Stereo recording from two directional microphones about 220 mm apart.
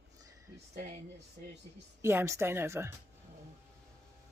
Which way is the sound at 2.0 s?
10° right (ahead or behind).